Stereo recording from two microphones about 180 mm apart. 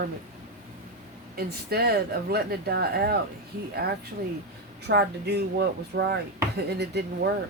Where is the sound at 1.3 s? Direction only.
60° right (ahead or behind).